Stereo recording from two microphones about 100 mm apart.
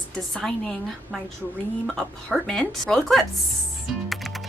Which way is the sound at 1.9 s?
5° left (ahead or behind).